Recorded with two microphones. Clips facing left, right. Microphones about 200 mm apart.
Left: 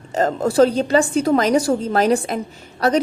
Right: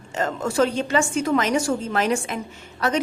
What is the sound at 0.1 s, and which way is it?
A woman's voice, 35° left (ahead or behind).